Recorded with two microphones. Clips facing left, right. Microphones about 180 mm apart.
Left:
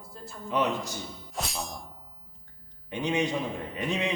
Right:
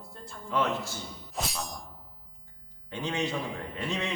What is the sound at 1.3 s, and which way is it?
Music, centre (ahead or behind).